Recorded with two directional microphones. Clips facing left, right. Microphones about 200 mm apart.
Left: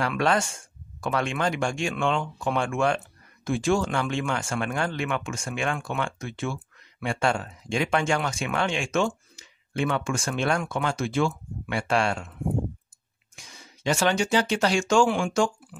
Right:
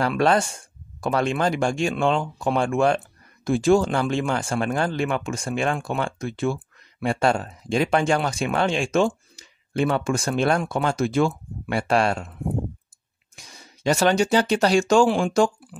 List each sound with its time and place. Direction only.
0.0 s speech: 35° right (ahead or behind)
13.5 s speech: 40° right (ahead or behind)